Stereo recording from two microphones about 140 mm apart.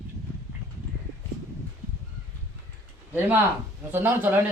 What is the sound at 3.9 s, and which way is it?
Speech, 15° right (ahead or behind).